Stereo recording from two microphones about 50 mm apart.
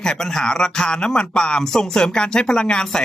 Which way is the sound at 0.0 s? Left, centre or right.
Centre.